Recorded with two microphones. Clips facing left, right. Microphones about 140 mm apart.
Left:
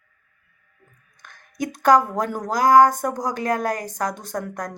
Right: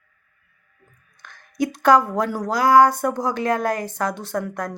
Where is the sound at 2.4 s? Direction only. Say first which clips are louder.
Even; 45° left (ahead or behind).